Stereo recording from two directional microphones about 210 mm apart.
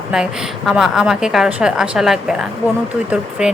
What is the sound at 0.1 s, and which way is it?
Speech, 5° right (ahead or behind).